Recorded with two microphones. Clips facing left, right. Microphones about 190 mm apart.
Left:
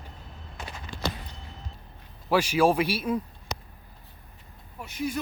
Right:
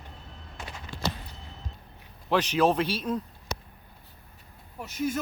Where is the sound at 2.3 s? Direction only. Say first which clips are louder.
Left 1 dB; 10° left (ahead or behind).